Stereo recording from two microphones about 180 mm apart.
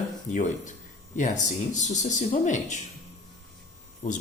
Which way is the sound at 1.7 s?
40° left (ahead or behind).